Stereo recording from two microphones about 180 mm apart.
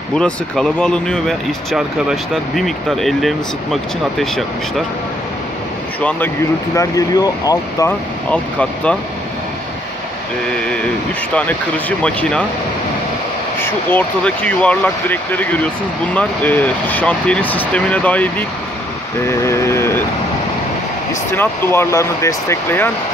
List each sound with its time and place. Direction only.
0.1 s speech: 5° left (ahead or behind)
5.9 s speech: 10° left (ahead or behind)
8.3 s speech: 5° left (ahead or behind)
12.0 s speech: 5° left (ahead or behind)
13.6 s speech: 10° left (ahead or behind)
21.1 s speech: 15° left (ahead or behind)